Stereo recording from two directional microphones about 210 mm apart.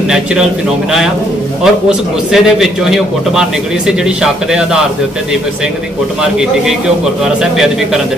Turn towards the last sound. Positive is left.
turn(degrees=0)  # may be behind; listen again after turning